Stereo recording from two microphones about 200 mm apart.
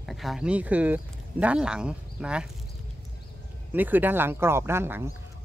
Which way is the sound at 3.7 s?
10° right (ahead or behind).